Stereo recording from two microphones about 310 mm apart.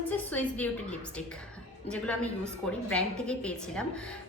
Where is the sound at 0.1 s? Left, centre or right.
Centre.